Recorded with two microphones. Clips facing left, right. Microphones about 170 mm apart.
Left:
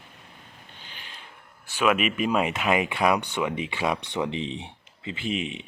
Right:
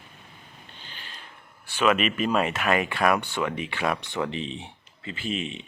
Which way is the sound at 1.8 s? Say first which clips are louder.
Even; 10° left (ahead or behind).